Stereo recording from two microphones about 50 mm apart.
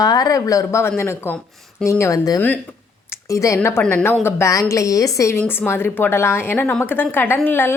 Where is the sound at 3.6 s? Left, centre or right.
Left.